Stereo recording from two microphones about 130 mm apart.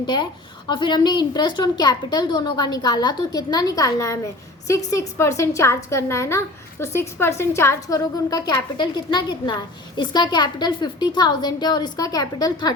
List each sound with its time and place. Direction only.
0.0 s a woman's voice: 35° left (ahead or behind)